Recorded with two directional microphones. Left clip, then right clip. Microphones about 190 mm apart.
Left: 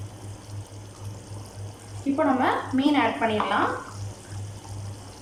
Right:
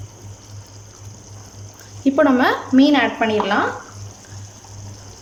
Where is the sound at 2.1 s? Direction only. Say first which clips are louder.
Right 7 dB; 60° right (ahead or behind).